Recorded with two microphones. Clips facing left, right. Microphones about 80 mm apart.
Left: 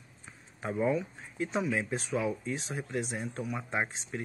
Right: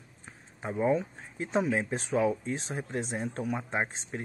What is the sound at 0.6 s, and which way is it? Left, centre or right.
Speech, right.